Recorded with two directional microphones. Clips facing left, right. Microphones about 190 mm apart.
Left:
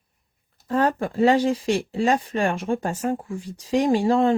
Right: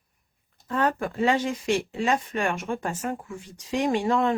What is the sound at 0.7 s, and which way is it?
Speech, 30° left (ahead or behind).